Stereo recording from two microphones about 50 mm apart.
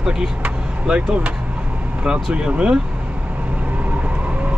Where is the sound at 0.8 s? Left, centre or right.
Right.